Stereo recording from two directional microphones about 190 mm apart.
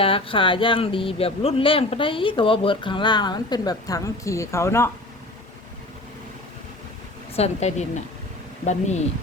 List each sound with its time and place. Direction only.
0.0 s speech: 30° left (ahead or behind)
7.3 s speech: 35° left (ahead or behind)